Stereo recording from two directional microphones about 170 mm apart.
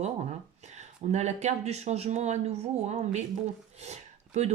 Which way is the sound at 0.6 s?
40° right (ahead or behind).